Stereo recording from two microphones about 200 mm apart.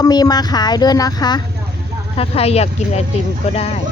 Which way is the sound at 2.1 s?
30° left (ahead or behind).